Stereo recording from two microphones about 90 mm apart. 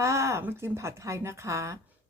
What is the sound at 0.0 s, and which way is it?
A woman's voice, 30° right (ahead or behind).